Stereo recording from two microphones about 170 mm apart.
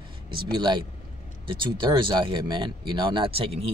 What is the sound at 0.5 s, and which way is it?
Speech, 25° right (ahead or behind).